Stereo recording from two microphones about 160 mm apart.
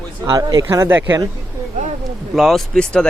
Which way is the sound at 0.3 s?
25° right (ahead or behind).